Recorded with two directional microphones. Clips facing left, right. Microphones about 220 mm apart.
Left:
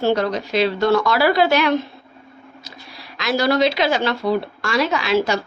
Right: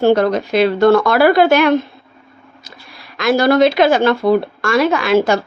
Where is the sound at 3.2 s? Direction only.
50° right (ahead or behind).